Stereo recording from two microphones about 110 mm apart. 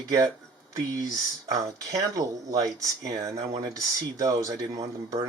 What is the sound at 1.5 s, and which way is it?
Speech, 35° right (ahead or behind).